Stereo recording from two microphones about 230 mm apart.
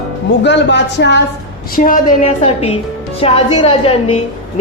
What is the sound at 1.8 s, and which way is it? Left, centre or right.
A woman's voice, left.